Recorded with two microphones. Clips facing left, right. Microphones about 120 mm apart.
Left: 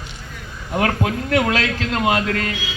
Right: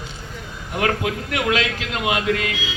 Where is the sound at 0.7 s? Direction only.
35° left (ahead or behind).